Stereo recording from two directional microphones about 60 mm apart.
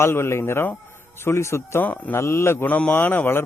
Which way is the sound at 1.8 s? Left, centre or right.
Left.